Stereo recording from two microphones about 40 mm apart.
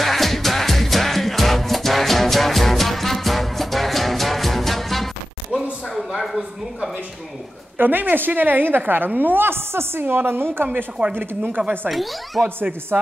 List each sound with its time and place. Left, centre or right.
0.0 s music: centre
5.5 s a sound: centre
7.7 s a woman's voice: right
11.6 s speech: right
11.9 s speech: centre